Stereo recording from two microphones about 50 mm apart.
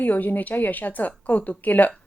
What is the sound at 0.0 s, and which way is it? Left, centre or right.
A woman's voice, left.